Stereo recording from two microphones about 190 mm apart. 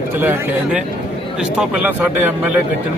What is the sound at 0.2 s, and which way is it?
A man's voice, 10° right (ahead or behind).